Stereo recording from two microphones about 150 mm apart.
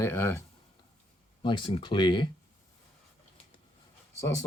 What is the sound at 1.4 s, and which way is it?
Speech, 30° left (ahead or behind).